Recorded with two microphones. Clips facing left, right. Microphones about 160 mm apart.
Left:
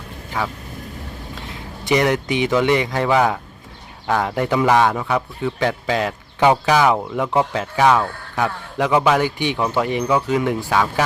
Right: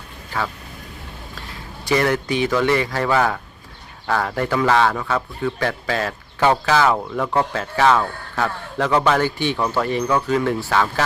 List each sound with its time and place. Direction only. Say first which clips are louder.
0.3 s a man's voice: left 1 dB; 15° left (ahead or behind)